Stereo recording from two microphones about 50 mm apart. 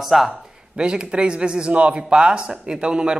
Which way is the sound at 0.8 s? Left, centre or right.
Centre.